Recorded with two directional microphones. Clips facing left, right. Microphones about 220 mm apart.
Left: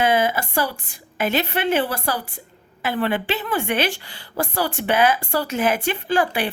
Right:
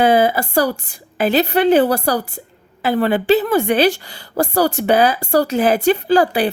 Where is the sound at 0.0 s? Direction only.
35° right (ahead or behind).